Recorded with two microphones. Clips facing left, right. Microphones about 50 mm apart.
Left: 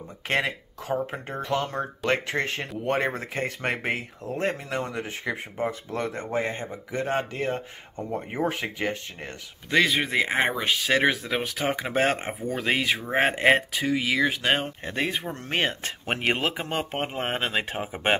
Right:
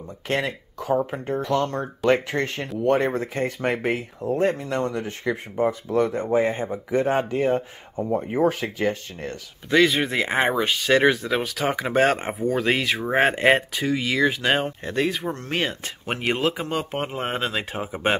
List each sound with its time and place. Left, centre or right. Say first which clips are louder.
0.3 s speech: right 1 dB; centre
6.7 s speech: right 7 dB; centre
7.1 s speech: right 4 dB; centre
8.5 s speech: right 5 dB; centre
14.9 s speech: right 4 dB; centre
15.5 s speech: left 2 dB; left